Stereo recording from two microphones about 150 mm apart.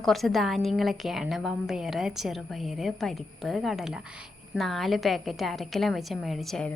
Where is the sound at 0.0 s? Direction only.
Centre (ahead or behind).